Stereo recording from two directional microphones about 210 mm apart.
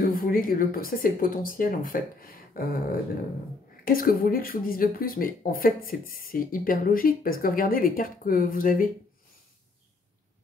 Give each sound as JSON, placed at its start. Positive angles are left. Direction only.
{"t": 0.0, "sound": "speech", "side_deg": 45}